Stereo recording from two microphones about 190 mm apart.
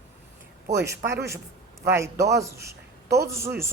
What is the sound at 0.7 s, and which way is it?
A man's voice, 15° right (ahead or behind).